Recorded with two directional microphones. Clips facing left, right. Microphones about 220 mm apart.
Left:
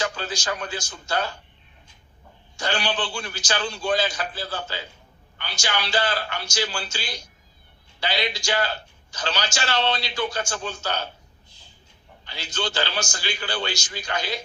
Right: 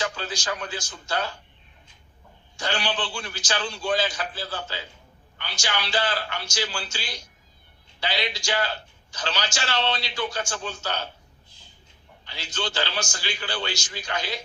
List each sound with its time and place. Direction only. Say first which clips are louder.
0.0 s a man's voice: left 2 dB; 45° left (ahead or behind)
2.6 s a man's voice: left 2 dB; 45° left (ahead or behind)
12.2 s a man's voice: left 2 dB; 45° left (ahead or behind)